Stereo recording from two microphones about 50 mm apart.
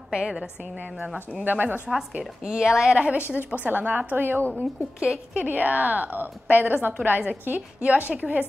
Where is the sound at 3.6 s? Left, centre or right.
Right.